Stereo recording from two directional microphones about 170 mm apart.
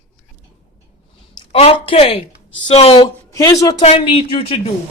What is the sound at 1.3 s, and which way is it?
A woman's voice, 35° left (ahead or behind).